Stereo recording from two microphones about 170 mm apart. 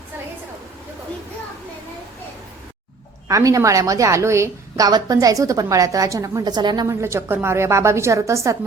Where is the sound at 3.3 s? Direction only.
20° right (ahead or behind).